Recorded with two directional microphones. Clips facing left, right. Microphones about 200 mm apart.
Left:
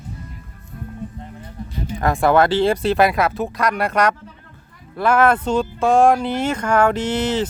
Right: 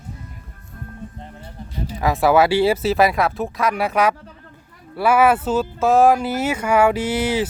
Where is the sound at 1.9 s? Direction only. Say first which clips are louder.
Even; 5° right (ahead or behind).